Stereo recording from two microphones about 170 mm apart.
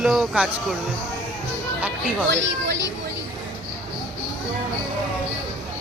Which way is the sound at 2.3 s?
90° right.